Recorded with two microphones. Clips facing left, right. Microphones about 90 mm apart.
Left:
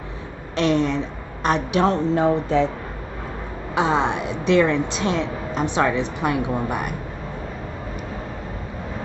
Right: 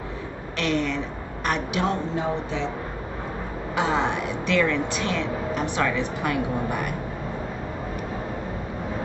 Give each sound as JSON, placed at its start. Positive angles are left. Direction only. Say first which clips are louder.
{"t": 0.6, "sound": "a woman's voice", "louder": "left 5 dB", "side_deg": 25}
{"t": 2.1, "sound": "speech", "louder": "left 8 dB", "side_deg": 45}
{"t": 3.7, "sound": "a woman's voice", "louder": "left 4 dB", "side_deg": 20}